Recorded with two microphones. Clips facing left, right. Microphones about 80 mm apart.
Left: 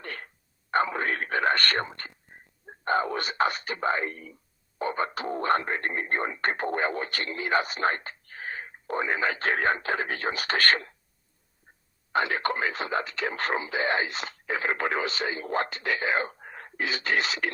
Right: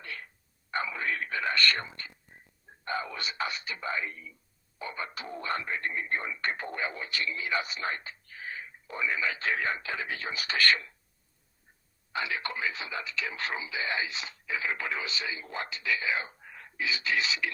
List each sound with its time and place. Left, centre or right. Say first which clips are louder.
0.0 s a sound: left 4 dB; left
2.6 s speech: left 8 dB; left
12.1 s speech: left 7 dB; left